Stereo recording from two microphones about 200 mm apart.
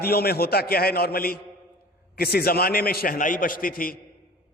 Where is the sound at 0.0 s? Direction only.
50° left (ahead or behind).